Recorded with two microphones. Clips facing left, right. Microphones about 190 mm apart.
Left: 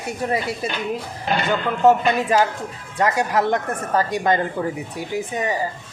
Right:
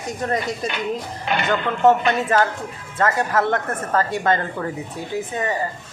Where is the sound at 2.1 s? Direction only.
10° left (ahead or behind).